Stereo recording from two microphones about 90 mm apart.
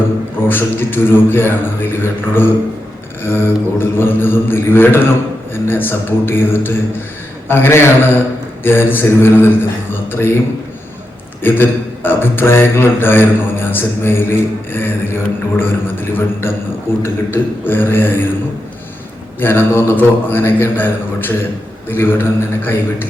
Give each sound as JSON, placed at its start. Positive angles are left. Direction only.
{"t": 0.4, "sound": "speech", "side_deg": 25}
{"t": 11.4, "sound": "speech", "side_deg": 25}
{"t": 19.4, "sound": "speech", "side_deg": 25}